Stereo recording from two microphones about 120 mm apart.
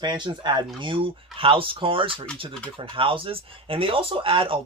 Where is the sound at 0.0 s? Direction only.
40° right (ahead or behind).